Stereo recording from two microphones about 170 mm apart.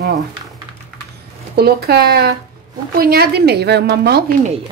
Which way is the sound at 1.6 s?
70° right (ahead or behind).